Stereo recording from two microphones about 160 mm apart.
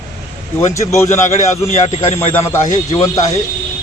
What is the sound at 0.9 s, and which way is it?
Speech, 15° left (ahead or behind).